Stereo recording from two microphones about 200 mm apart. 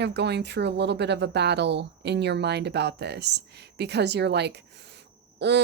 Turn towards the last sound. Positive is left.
turn(degrees=-60)  # may be behind; listen again after turning